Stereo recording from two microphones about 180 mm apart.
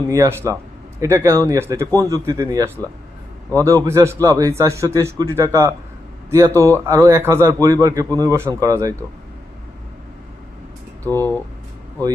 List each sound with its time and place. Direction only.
0.1 s speech: 15° right (ahead or behind)
11.0 s speech: 10° left (ahead or behind)